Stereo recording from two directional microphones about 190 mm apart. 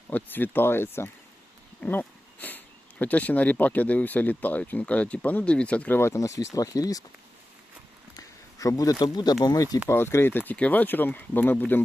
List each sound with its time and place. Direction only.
0.1 s speech: 10° left (ahead or behind)
8.1 s speech: 20° left (ahead or behind)